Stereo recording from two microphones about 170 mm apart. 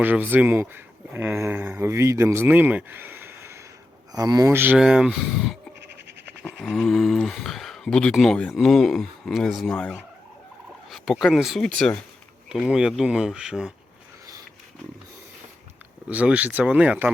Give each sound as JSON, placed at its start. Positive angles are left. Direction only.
{"t": 0.0, "sound": "speech", "side_deg": -10}
{"t": 5.8, "sound": "frog", "side_deg": -90}
{"t": 6.4, "sound": "speech", "side_deg": 5}
{"t": 16.0, "sound": "speech", "side_deg": -10}